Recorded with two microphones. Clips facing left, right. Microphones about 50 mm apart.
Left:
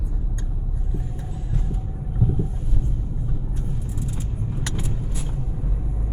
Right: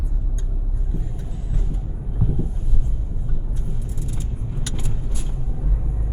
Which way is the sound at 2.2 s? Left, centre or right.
Centre.